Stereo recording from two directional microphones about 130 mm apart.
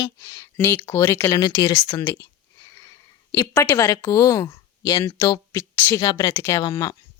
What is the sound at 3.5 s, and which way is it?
Speech, 20° left (ahead or behind).